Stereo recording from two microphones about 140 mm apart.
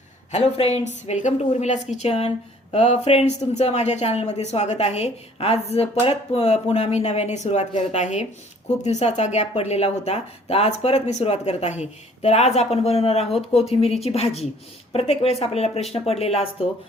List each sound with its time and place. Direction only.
0.3 s speech: 50° left (ahead or behind)